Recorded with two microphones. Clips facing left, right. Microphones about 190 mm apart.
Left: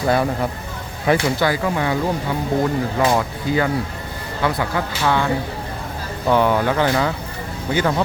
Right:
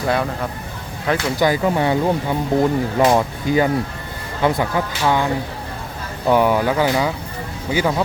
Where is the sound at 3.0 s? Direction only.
20° right (ahead or behind).